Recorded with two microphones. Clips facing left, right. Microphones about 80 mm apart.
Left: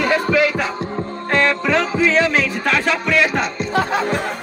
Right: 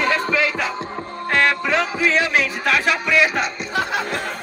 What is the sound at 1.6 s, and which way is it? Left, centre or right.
Music, centre.